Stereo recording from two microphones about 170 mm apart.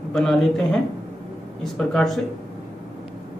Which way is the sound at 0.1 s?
5° left (ahead or behind).